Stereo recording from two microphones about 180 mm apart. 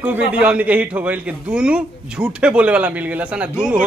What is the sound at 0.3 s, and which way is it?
A man's voice, 5° right (ahead or behind).